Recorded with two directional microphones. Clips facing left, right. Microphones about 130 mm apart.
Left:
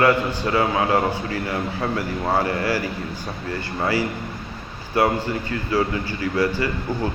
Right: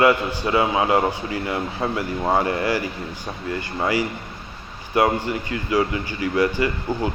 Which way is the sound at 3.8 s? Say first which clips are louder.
Even; 15° right (ahead or behind).